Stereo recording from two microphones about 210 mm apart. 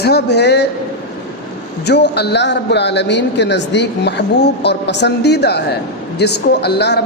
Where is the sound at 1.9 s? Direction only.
50° left (ahead or behind).